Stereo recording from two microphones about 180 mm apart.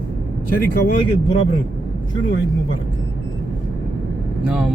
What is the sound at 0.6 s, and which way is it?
Speech, 55° left (ahead or behind).